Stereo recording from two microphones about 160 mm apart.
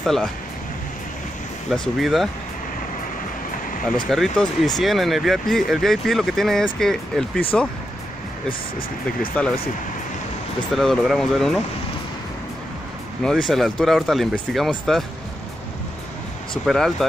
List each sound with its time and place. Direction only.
0.0 s speech: centre (ahead or behind)
1.7 s speech: centre (ahead or behind)
4.1 s speech: centre (ahead or behind)
8.5 s speech: 60° left (ahead or behind)
10.7 s speech: centre (ahead or behind)
13.2 s speech: centre (ahead or behind)
16.6 s speech: centre (ahead or behind)